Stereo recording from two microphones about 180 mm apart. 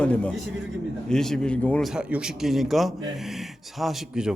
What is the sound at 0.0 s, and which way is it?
A man's voice, 5° left (ahead or behind).